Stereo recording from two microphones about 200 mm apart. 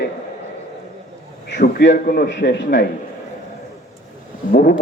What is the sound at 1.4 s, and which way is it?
A man's voice, 60° left (ahead or behind).